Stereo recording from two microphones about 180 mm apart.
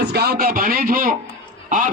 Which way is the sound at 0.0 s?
65° right (ahead or behind).